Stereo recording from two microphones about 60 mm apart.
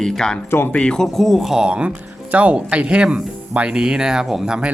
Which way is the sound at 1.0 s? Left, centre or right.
Centre.